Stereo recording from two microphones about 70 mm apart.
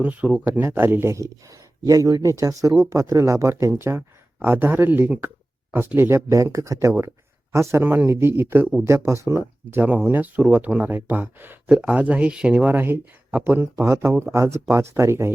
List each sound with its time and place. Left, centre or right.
0.0 s speech: right
1.1 s speech: right
2.2 s speech: right
6.1 s speech: right
9.4 s speech: right
11.7 s speech: centre; by 15.3 s right